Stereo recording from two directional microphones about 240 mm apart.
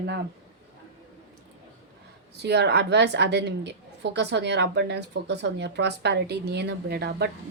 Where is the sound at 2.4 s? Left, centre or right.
Right.